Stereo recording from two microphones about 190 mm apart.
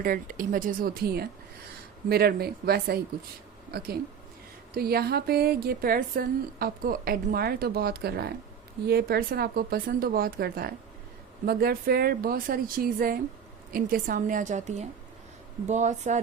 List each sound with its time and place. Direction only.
0.0 s a woman's voice: 45° right (ahead or behind)